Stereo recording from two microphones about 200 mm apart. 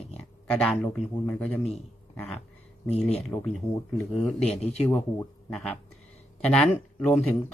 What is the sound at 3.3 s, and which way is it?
Speech, 15° left (ahead or behind).